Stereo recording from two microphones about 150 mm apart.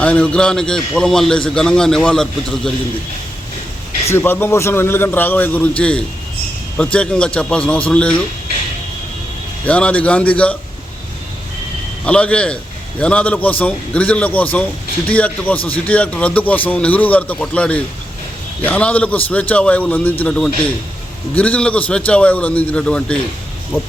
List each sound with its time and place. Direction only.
0.0 s a man's voice: 10° left (ahead or behind)
4.1 s a man's voice: 15° left (ahead or behind)
9.6 s a man's voice: 10° left (ahead or behind)
12.0 s a man's voice: 10° left (ahead or behind)